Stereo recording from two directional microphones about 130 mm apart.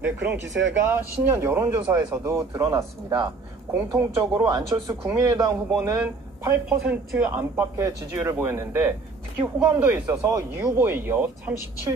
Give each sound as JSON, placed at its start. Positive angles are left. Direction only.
{"t": 0.0, "sound": "speech", "side_deg": -15}
{"t": 6.7, "sound": "speech", "side_deg": -5}